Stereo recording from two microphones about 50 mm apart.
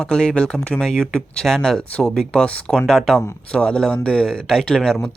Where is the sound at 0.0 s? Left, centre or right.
Centre.